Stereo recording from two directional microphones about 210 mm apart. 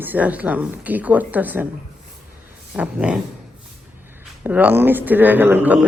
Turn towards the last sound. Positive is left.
turn(degrees=-10)  # may be behind; listen again after turning